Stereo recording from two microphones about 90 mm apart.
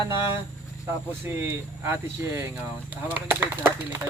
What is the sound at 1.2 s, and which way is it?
Speech, 25° right (ahead or behind).